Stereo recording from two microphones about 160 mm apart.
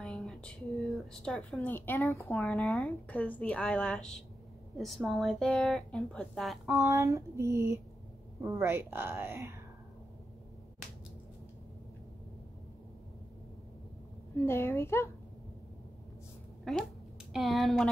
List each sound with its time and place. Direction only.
0.0 s a woman's voice: centre (ahead or behind)
2.4 s a woman's voice: 5° left (ahead or behind)
7.5 s speech: 20° right (ahead or behind)
14.4 s a woman's voice: 15° left (ahead or behind)
17.3 s speech: centre (ahead or behind)